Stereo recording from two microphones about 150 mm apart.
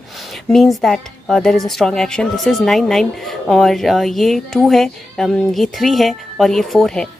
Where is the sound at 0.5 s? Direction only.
Centre (ahead or behind).